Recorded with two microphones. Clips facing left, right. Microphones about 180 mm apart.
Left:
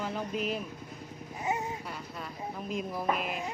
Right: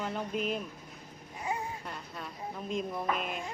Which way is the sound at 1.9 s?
Centre (ahead or behind).